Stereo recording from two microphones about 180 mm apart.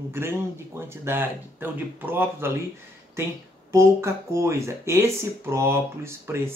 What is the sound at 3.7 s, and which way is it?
Speech, 15° right (ahead or behind).